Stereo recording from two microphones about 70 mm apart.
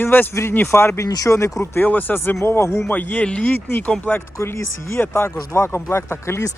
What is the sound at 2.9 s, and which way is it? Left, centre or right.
Speech, left.